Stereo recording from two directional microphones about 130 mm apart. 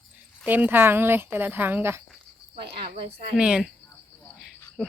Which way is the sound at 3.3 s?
5° right (ahead or behind).